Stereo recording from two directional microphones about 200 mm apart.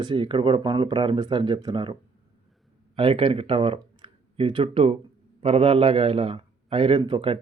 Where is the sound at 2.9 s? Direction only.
25° right (ahead or behind).